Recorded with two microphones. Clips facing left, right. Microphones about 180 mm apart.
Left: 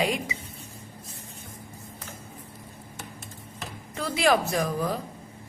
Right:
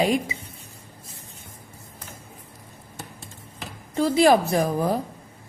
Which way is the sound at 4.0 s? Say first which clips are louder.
Right 6 dB; 30° right (ahead or behind).